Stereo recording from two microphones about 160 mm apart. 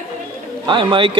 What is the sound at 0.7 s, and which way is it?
Speech, 30° right (ahead or behind).